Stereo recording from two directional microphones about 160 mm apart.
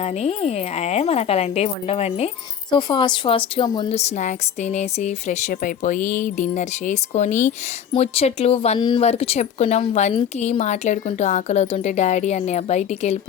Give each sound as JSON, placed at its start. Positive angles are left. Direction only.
{"t": 0.0, "sound": "speech", "side_deg": 40}
{"t": 2.6, "sound": "a woman's voice", "side_deg": 30}
{"t": 7.9, "sound": "a woman's voice", "side_deg": 40}